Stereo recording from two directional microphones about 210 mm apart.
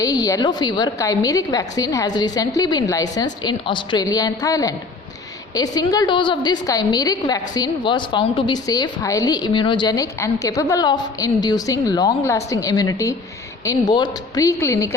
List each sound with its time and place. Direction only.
0.0 s a woman's voice: 15° left (ahead or behind)